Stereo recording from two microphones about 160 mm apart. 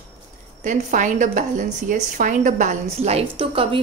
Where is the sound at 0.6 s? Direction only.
50° right (ahead or behind); by 3.8 s 35° right (ahead or behind).